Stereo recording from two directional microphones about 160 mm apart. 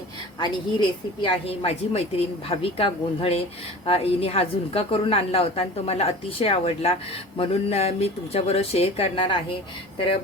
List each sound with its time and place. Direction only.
0.3 s a woman's voice: 30° left (ahead or behind)